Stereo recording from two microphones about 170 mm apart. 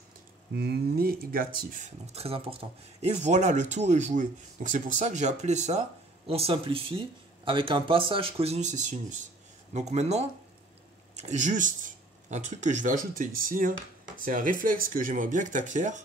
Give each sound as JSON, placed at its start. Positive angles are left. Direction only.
{"t": 0.6, "sound": "speech", "side_deg": -65}